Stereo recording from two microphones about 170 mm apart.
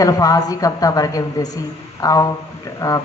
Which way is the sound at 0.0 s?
20° left (ahead or behind).